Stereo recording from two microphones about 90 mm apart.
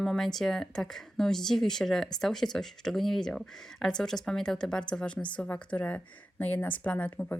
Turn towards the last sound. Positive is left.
turn(degrees=20)  # may be behind; listen again after turning